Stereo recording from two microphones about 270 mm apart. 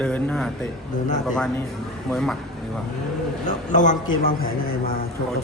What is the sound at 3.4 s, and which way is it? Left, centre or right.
A man's voice, left.